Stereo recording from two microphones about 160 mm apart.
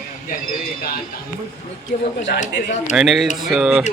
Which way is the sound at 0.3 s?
60° left (ahead or behind).